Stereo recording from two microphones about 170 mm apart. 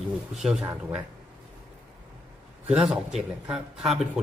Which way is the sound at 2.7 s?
5° right (ahead or behind).